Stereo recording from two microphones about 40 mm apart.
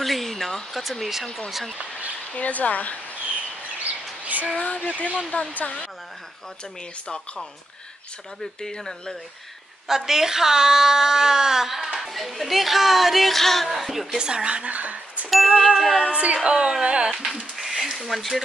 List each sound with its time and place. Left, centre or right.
0.0 s a sound: centre
0.8 s speech: centre
1.8 s speech: right
2.3 s speech: left
4.6 s speech: left
8.5 s speech: centre
9.8 s speech: centre
14.1 s speech: centre
14.7 s speech: right
15.2 s speech: centre
16.1 s speech: right
17.6 s a sound: centre